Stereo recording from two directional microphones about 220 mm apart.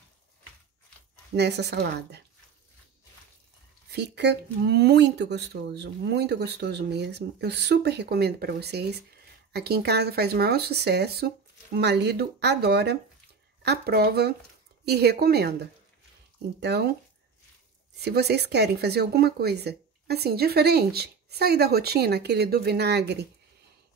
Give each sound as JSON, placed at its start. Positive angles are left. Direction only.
{"t": 1.3, "sound": "speech", "side_deg": -50}
{"t": 3.9, "sound": "speech", "side_deg": -50}
{"t": 17.9, "sound": "speech", "side_deg": -50}